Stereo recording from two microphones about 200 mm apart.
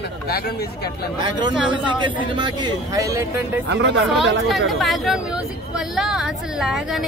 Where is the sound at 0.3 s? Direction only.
50° left (ahead or behind).